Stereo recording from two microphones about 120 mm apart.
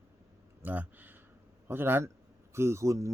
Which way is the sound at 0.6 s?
15° right (ahead or behind).